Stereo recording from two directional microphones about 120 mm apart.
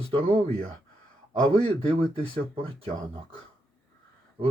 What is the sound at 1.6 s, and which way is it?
Speech, 50° right (ahead or behind).